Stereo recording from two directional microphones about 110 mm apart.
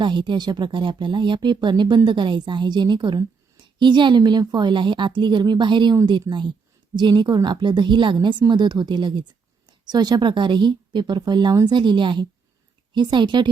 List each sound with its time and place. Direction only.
0.0 s a woman's voice: 45° right (ahead or behind)
6.3 s speech: 25° right (ahead or behind)
6.9 s a woman's voice: 45° right (ahead or behind)